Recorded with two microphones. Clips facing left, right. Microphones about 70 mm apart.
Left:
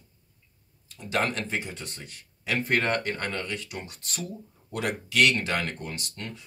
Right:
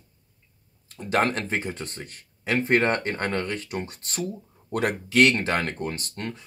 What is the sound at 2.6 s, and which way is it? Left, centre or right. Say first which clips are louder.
Speech: right 4 dB; right.